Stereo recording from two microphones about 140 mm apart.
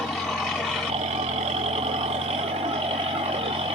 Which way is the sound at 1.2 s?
50° right (ahead or behind).